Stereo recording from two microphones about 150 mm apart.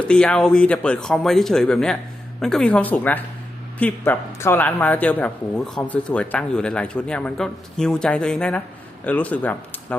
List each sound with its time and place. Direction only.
0.1 s speech: 5° left (ahead or behind)